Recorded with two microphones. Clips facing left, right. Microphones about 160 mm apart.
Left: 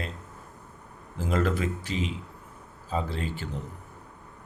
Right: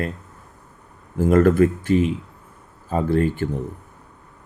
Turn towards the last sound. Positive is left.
turn(degrees=-55)  # may be behind; listen again after turning